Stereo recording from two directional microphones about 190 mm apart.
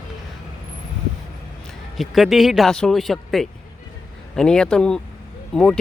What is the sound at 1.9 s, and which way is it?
Speech, centre (ahead or behind).